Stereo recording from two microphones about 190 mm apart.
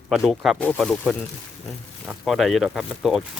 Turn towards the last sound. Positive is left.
turn(degrees=0)  # may be behind; listen again after turning